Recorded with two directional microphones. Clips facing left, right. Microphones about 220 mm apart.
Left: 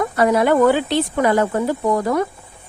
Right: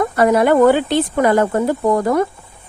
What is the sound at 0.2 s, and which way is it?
Speech, 50° right (ahead or behind).